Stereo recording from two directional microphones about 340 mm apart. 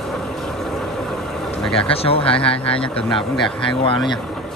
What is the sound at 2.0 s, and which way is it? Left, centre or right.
Speech, centre.